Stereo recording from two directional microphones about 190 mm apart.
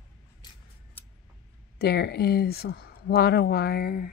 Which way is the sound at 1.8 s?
60° left (ahead or behind).